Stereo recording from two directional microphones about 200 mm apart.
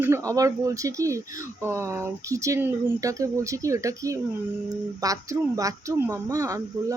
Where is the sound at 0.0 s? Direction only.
15° right (ahead or behind).